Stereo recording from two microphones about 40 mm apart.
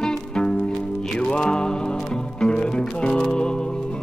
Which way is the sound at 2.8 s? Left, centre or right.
Centre.